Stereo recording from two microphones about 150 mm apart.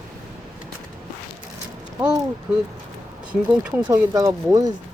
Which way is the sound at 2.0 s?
25° right (ahead or behind).